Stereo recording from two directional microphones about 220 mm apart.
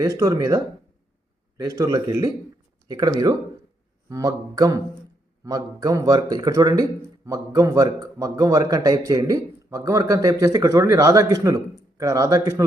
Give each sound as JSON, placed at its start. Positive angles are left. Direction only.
{"t": 0.2, "sound": "a man's voice", "side_deg": -15}